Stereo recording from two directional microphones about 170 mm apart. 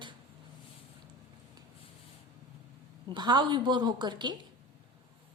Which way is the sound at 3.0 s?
25° right (ahead or behind).